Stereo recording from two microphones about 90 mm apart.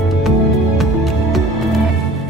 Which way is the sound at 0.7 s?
Centre (ahead or behind).